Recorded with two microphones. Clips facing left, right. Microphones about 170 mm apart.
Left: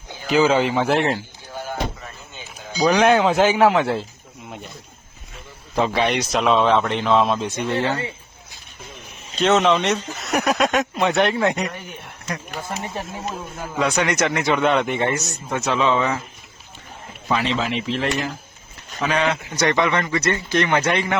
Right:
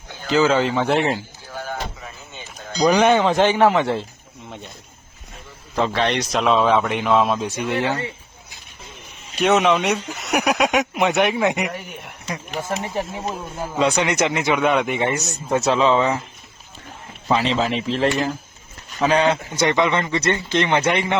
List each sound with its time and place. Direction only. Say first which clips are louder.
0.1 s speech: even; 15° left (ahead or behind)
0.9 s speech: even; centre (ahead or behind)
1.5 s a sound: even; 10° left (ahead or behind)
2.0 s a sound: right 1 dB; centre (ahead or behind)
2.9 s speech: even; centre (ahead or behind)
5.7 s speech: left 1 dB; 10° left (ahead or behind); by 7.9 s 10° right (ahead or behind)
9.3 s a man's voice: even; 15° right (ahead or behind)
10.5 s speech: even; 15° right (ahead or behind)
13.7 s speech: right 2 dB; 25° right (ahead or behind)
14.0 s speech: even; 15° right (ahead or behind)
14.6 s speech: even; 10° right (ahead or behind)
15.1 s speech: right 3 dB; 30° right (ahead or behind)
17.2 s speech: right 2 dB; 25° right (ahead or behind)
19.6 s speech: right 1 dB; 20° right (ahead or behind)